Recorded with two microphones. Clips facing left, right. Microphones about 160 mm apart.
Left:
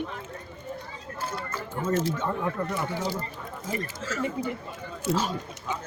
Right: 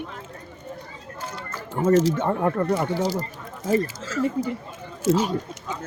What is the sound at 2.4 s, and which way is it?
Speech, 55° right (ahead or behind).